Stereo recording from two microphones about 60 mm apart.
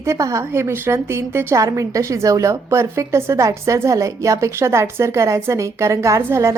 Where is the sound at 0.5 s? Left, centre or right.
Right.